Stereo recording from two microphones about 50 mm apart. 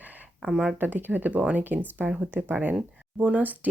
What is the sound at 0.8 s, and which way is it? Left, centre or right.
Speech, right.